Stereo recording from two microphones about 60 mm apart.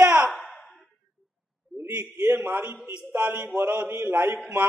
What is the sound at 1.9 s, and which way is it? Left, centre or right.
Speech, right.